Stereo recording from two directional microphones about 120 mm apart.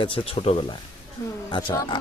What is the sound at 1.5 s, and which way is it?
Speech, 40° left (ahead or behind).